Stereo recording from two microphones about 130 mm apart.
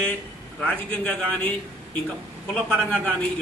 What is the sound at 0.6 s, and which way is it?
Speech, 10° left (ahead or behind).